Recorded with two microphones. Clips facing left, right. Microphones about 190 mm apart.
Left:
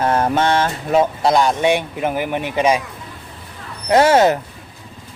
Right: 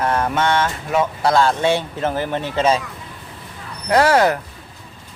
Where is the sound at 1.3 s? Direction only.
15° left (ahead or behind).